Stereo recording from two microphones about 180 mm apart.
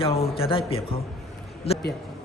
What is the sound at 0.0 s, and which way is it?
A man's voice, 35° left (ahead or behind).